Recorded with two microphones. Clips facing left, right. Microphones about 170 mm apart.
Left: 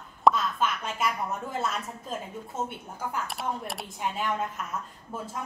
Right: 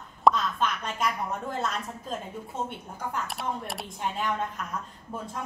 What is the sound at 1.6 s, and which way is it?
A woman's voice, 5° left (ahead or behind).